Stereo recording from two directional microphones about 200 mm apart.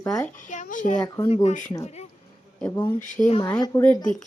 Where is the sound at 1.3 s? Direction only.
35° left (ahead or behind).